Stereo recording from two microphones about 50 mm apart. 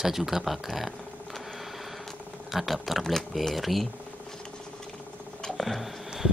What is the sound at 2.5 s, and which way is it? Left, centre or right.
Speech, centre.